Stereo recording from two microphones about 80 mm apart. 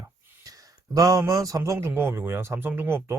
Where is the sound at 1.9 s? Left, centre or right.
Right.